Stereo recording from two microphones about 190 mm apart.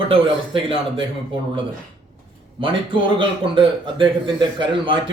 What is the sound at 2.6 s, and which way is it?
A man's voice, 25° right (ahead or behind).